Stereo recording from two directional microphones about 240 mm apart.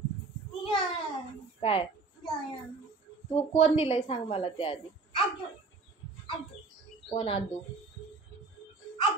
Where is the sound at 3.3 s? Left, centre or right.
Left.